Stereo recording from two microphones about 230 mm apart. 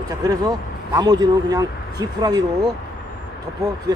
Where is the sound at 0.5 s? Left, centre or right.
Centre.